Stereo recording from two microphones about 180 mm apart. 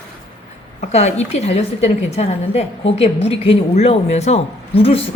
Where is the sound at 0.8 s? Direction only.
40° left (ahead or behind).